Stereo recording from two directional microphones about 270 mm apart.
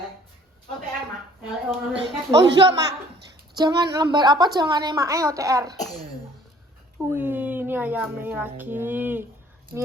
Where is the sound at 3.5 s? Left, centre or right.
Centre.